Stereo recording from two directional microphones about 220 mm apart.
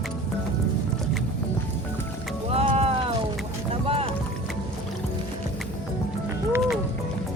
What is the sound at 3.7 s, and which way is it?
Boat, 25° right (ahead or behind).